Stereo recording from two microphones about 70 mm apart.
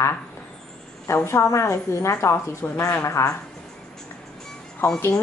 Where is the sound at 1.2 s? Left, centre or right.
Left.